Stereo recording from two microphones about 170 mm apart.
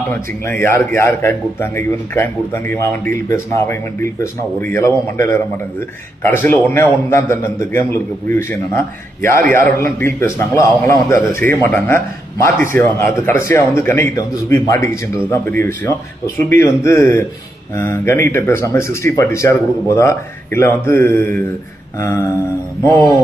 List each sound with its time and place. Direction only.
0.4 s a man's voice: 15° left (ahead or behind)